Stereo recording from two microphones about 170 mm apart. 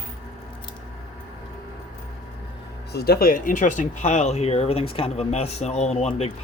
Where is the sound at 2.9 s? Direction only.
70° left (ahead or behind).